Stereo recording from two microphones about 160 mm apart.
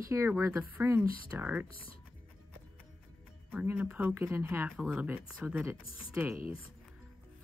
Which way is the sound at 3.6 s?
15° right (ahead or behind).